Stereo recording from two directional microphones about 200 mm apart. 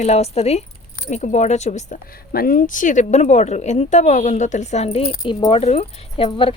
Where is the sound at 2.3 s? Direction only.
45° left (ahead or behind); by 6.6 s 30° left (ahead or behind).